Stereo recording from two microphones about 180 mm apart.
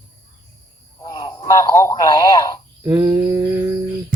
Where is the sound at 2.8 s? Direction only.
15° right (ahead or behind).